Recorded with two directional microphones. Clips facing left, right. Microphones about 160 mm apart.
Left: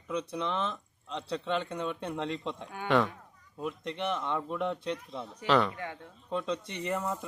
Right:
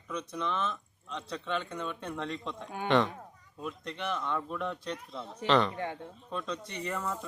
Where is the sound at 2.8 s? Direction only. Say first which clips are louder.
Even; 5° left (ahead or behind).